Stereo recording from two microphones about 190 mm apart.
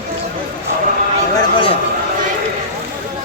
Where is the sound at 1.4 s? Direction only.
25° left (ahead or behind).